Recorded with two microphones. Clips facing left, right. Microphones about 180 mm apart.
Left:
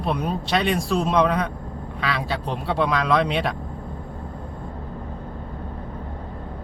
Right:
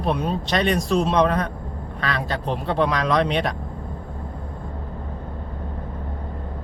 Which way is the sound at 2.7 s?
5° left (ahead or behind).